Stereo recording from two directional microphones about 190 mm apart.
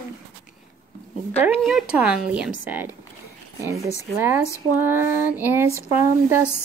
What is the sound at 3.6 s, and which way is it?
Speech, 15° right (ahead or behind).